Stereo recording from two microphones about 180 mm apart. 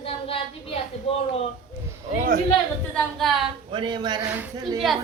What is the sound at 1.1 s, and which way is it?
Speech, 30° left (ahead or behind).